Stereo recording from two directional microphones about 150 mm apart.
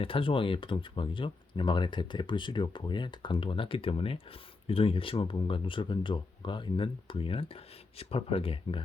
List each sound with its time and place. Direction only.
0.0 s speech: 35° left (ahead or behind)